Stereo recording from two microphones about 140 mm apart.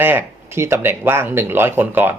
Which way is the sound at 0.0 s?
15° right (ahead or behind).